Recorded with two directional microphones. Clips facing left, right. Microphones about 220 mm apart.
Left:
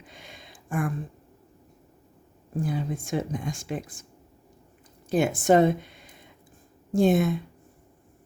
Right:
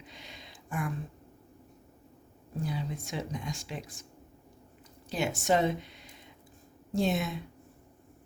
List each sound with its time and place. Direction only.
0.0 s a sound: 50° left (ahead or behind)
2.6 s speech: 50° left (ahead or behind)
5.0 s speech: 50° left (ahead or behind)